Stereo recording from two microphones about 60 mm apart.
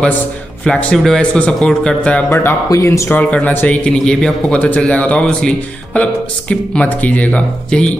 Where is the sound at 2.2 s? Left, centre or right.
Left.